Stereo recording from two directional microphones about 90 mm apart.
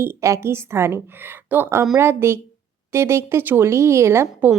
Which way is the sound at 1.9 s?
30° right (ahead or behind).